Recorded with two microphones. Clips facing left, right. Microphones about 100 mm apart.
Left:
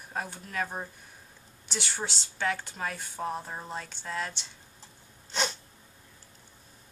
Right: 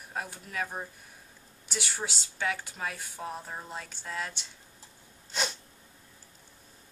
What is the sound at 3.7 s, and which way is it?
Speech, centre (ahead or behind).